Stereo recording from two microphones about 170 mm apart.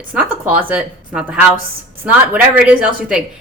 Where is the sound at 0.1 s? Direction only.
10° right (ahead or behind).